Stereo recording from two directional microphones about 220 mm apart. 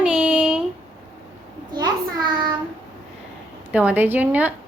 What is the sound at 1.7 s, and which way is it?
Speech, 20° right (ahead or behind).